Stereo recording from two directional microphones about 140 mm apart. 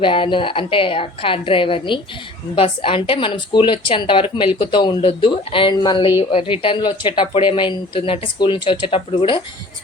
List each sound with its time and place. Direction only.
0.0 s a woman's voice: 35° left (ahead or behind)